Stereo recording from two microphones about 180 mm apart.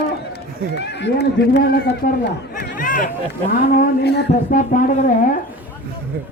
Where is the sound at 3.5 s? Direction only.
50° left (ahead or behind).